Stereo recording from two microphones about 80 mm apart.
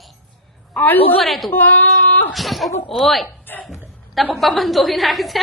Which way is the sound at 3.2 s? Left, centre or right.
Left.